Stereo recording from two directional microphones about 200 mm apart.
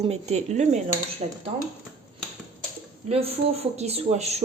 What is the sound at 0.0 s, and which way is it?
Speech, 30° right (ahead or behind).